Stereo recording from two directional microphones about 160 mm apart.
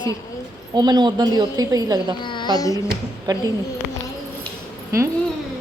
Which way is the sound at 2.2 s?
30° left (ahead or behind).